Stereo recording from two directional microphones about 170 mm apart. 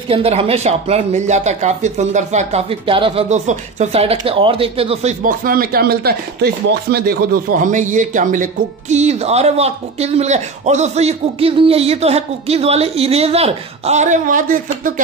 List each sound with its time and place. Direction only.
0.1 s speech: 35° right (ahead or behind)
5.2 s speech: 55° right (ahead or behind)
7.6 s speech: 50° right (ahead or behind)